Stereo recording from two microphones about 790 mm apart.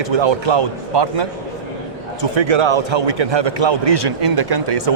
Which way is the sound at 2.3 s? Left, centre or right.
Right.